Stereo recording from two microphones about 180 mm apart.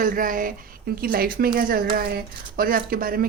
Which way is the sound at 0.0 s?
50° right (ahead or behind).